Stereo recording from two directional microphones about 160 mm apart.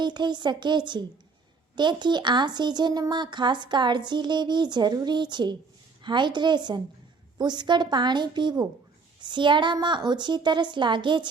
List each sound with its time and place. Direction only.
0.0 s speech: 30° right (ahead or behind)